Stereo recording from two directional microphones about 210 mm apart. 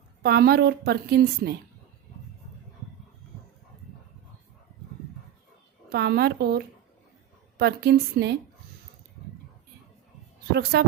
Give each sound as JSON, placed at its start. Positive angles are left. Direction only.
{"t": 0.2, "sound": "a woman's voice", "side_deg": -50}
{"t": 5.9, "sound": "a woman's voice", "side_deg": -50}
{"t": 7.6, "sound": "a woman's voice", "side_deg": -50}
{"t": 10.5, "sound": "a woman's voice", "side_deg": -50}